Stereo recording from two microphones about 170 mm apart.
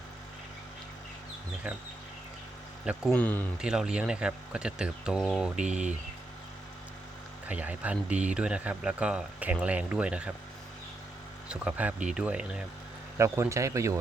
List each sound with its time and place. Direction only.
3.1 s speech: 10° left (ahead or behind)
3.6 s speech: 5° right (ahead or behind)
7.4 s speech: 10° right (ahead or behind)
11.4 s speech: 5° right (ahead or behind)
13.1 s speech: 15° right (ahead or behind)